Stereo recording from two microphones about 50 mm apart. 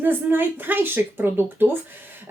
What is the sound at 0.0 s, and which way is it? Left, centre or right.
A woman's voice, right.